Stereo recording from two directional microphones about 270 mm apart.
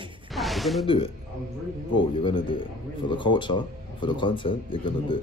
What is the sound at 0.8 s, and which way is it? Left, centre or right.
Speech, centre.